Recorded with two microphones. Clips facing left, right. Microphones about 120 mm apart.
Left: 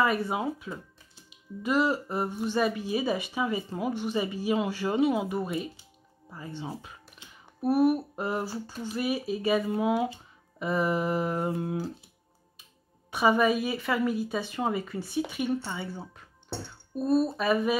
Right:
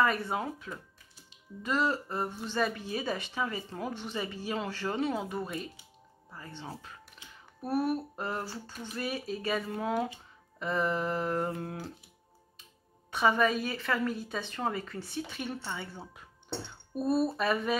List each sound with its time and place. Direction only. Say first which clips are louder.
0.0 s speech: left 3 dB; 10° left (ahead or behind)
13.1 s speech: left 3 dB; 10° left (ahead or behind)
16.9 s speech: left 3 dB; 5° right (ahead or behind)